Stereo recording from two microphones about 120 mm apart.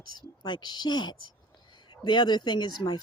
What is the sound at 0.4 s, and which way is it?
Speech, 40° left (ahead or behind).